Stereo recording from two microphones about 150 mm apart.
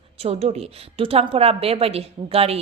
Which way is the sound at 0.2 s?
45° right (ahead or behind).